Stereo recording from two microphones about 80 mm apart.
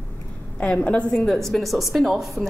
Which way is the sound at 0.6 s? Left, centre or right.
Centre.